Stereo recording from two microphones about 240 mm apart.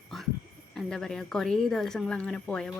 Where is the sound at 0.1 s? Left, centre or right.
Centre.